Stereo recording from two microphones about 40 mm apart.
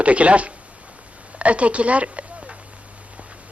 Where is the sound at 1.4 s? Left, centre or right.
Right.